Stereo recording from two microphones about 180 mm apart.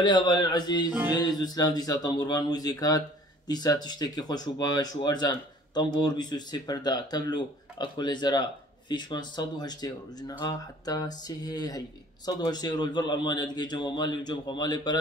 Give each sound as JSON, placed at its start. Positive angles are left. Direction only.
{"t": 0.0, "sound": "speech", "side_deg": 25}